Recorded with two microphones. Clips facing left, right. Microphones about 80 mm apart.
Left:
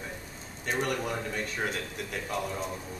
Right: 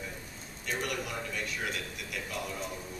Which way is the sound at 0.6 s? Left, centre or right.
Left.